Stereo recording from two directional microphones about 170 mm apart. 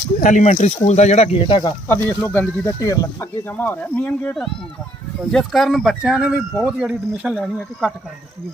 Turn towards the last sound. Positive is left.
turn(degrees=0)  # may be behind; listen again after turning